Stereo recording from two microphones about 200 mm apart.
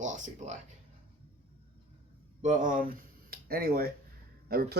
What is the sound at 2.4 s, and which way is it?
Speech, 35° right (ahead or behind).